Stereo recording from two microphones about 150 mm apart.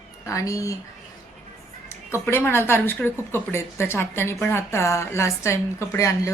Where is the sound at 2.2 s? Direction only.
15° left (ahead or behind).